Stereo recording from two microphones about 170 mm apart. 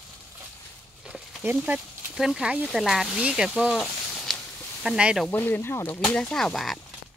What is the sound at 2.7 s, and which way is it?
Speech, centre (ahead or behind).